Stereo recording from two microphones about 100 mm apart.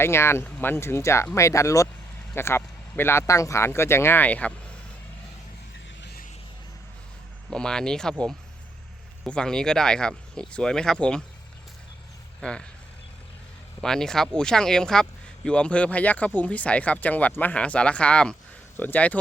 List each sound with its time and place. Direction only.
0.0 s speech: 25° left (ahead or behind)
7.5 s speech: 5° left (ahead or behind)
9.2 s speech: 10° left (ahead or behind)
12.4 s speech: 10° left (ahead or behind)
13.8 s speech: 5° left (ahead or behind)